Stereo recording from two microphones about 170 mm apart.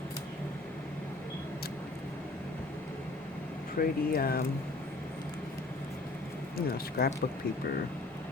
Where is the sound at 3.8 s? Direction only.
60° left (ahead or behind).